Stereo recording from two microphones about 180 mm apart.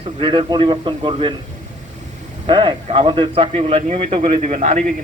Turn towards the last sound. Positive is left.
turn(degrees=-45)  # may be behind; listen again after turning